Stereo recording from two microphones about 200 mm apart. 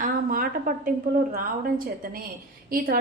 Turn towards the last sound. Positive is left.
turn(degrees=-45)  # may be behind; listen again after turning